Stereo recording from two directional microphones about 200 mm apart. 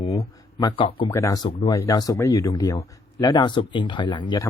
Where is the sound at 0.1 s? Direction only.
20° left (ahead or behind).